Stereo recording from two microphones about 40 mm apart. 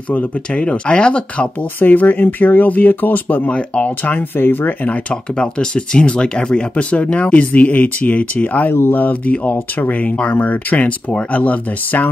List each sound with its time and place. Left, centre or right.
0.6 s speech: left
1.8 s speech: left
3.4 s speech: left
4.4 s speech: left
5.8 s speech: left
6.5 s speech: left
10.0 s speech: left
10.4 s speech: left